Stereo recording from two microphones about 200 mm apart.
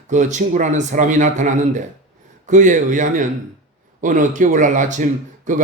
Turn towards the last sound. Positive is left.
turn(degrees=-40)  # may be behind; listen again after turning